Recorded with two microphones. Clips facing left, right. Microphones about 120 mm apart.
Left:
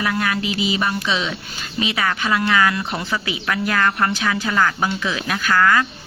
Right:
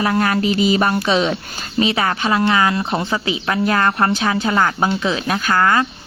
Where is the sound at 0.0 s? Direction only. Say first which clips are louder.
Right 5 dB; 40° right (ahead or behind).